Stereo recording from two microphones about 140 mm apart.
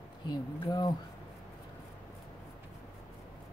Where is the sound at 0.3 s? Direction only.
30° left (ahead or behind).